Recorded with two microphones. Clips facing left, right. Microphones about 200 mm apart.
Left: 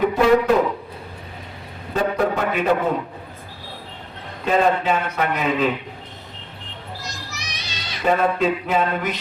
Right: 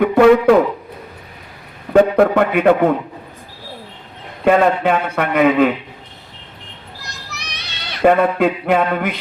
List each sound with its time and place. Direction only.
0.1 s a sound: 60° right (ahead or behind)
1.9 s a man's voice: 60° right (ahead or behind)
4.4 s a man's voice: 60° right (ahead or behind)
7.0 s child singing: 60° right (ahead or behind)